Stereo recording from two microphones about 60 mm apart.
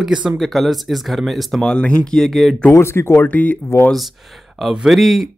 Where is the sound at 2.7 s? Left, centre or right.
Left.